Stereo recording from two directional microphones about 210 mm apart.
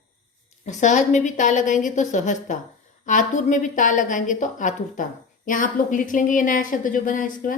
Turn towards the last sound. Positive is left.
turn(degrees=40)  # may be behind; listen again after turning